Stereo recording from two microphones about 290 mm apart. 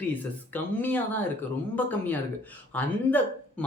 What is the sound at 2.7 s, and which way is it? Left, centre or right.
Speech, centre.